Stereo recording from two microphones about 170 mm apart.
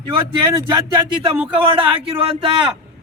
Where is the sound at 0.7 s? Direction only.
30° right (ahead or behind).